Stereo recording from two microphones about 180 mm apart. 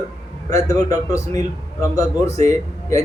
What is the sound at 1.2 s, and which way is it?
Speech, 40° right (ahead or behind).